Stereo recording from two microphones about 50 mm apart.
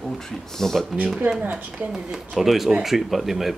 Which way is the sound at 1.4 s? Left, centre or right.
Right.